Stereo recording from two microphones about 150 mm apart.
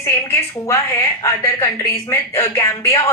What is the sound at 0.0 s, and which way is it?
A woman's voice, 20° left (ahead or behind).